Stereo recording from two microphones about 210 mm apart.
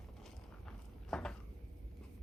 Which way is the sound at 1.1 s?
5° left (ahead or behind).